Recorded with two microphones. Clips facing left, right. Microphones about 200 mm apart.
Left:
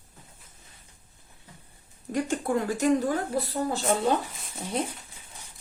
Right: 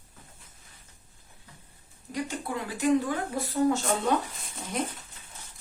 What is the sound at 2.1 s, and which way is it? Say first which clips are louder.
Speech: left 6 dB; 50° left (ahead or behind).